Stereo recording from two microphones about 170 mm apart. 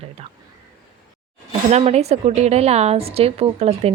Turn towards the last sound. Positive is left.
turn(degrees=-35)  # may be behind; listen again after turning